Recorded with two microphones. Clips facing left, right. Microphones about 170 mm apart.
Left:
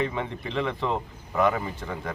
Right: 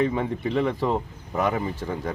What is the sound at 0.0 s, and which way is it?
Speech, 40° right (ahead or behind).